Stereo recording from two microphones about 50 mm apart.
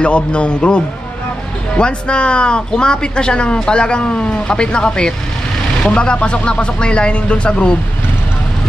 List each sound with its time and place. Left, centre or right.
0.0 s speech: left